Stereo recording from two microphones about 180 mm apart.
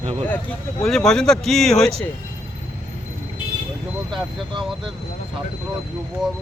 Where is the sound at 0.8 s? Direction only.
Centre (ahead or behind).